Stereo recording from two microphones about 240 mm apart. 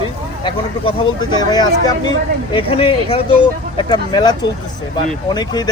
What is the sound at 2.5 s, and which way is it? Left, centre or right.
Speech, left.